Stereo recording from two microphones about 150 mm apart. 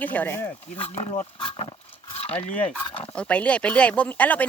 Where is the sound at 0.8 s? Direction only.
45° left (ahead or behind).